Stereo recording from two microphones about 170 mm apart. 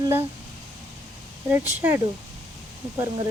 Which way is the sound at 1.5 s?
15° right (ahead or behind).